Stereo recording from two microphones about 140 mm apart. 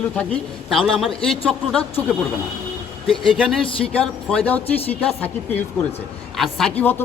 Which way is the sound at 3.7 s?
40° left (ahead or behind).